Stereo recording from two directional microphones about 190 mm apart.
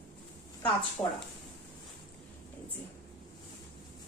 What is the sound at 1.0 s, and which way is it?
Speech, 15° left (ahead or behind).